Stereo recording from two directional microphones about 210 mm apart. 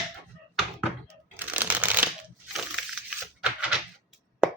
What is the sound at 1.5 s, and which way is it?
Shuffling cards, 5° right (ahead or behind).